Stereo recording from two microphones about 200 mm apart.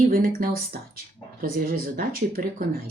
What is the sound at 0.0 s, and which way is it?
Speech, 45° right (ahead or behind).